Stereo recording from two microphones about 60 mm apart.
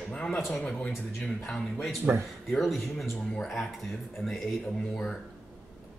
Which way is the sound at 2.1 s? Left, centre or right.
Right.